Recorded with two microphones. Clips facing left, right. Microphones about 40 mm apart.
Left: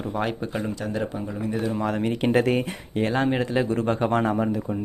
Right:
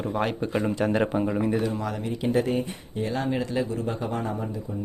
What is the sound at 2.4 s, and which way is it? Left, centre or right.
Speech, left.